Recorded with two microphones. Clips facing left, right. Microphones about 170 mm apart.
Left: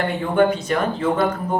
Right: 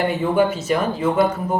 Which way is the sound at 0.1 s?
5° right (ahead or behind).